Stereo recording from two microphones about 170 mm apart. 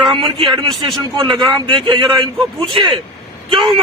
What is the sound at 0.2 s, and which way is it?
A man's voice, 35° right (ahead or behind).